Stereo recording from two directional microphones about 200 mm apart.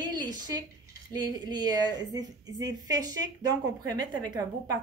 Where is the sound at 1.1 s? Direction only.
20° right (ahead or behind).